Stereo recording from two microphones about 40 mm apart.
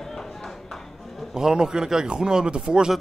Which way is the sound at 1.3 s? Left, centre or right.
Centre.